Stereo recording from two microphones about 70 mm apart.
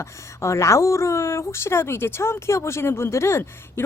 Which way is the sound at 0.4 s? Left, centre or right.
Left.